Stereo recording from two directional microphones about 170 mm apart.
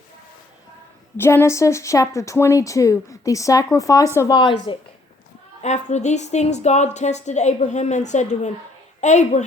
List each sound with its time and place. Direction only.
1.1 s speech: 15° left (ahead or behind)
5.6 s a woman's voice: 40° left (ahead or behind)